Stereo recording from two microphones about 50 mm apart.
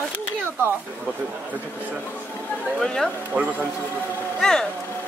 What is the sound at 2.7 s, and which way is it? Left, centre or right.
Speech, centre.